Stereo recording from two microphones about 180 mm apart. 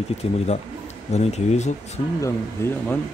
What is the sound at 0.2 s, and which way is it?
Speech, 35° left (ahead or behind).